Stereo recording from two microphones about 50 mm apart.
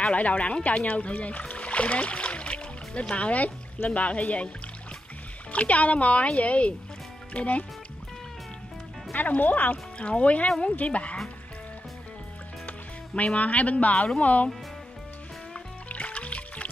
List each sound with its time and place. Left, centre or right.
0.1 s speech: left
5.5 s speech: left
9.1 s speech: left
9.9 s speech: left
12.6 s music: left
13.4 s speech: left
13.9 s speech: centre
14.2 s speech: left
15.9 s music: left